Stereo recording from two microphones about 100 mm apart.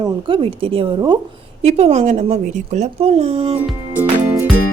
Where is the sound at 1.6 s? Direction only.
90° right.